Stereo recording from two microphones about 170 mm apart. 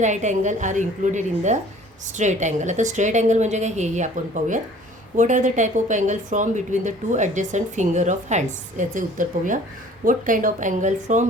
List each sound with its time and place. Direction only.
0.0 s a woman's voice: 45° right (ahead or behind)